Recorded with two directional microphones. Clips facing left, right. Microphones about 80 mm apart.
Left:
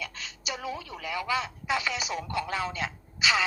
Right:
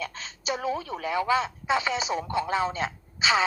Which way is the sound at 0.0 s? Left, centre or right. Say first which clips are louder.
Right 4 dB; right.